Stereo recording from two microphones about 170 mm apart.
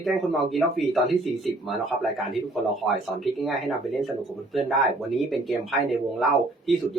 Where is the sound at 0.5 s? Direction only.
Centre (ahead or behind).